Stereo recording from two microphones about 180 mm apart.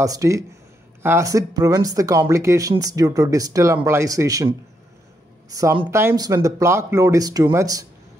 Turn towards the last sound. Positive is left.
turn(degrees=-20)  # may be behind; listen again after turning